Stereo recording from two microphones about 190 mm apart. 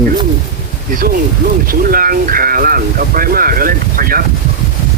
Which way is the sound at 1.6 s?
50° right (ahead or behind).